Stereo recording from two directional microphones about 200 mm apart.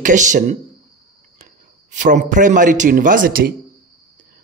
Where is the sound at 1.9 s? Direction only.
40° right (ahead or behind).